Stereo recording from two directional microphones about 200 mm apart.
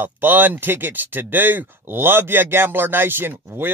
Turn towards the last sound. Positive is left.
turn(degrees=-10)  # may be behind; listen again after turning